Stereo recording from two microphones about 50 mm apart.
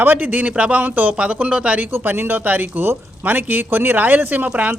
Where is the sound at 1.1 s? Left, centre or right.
Right.